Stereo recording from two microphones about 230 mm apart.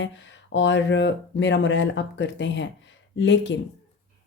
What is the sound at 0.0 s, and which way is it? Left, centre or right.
A woman's voice, left.